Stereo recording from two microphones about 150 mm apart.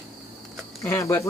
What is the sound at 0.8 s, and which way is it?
Speech, 20° left (ahead or behind).